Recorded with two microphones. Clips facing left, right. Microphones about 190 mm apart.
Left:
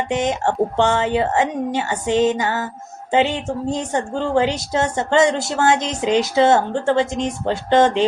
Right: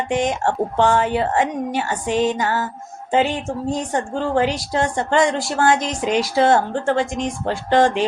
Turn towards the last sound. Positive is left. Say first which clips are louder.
# left 1 dB
turn(degrees=25)  # may be behind; listen again after turning